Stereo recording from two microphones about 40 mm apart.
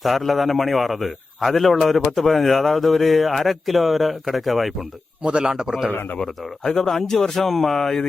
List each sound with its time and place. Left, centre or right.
0.0 s a man's voice: centre
5.4 s a man's voice: centre
6.7 s a man's voice: centre